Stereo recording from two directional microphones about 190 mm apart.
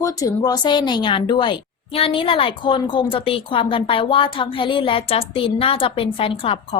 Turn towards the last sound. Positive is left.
turn(degrees=30)  # may be behind; listen again after turning